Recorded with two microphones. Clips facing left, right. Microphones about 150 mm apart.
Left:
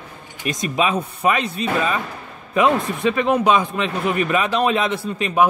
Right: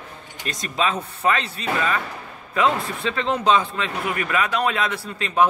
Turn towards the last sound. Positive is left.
turn(degrees=15)  # may be behind; listen again after turning